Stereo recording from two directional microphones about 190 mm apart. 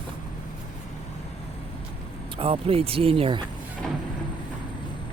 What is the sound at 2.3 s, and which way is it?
Speech, 30° right (ahead or behind).